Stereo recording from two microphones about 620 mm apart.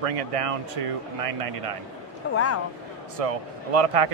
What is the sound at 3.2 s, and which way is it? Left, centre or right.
Speech, right.